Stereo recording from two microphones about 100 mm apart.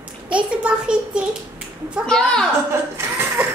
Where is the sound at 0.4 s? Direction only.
10° right (ahead or behind).